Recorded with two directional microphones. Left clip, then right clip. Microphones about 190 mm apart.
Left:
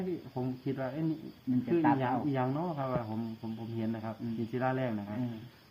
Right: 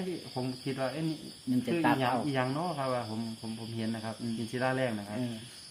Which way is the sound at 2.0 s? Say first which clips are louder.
Right 2 dB; 25° left (ahead or behind).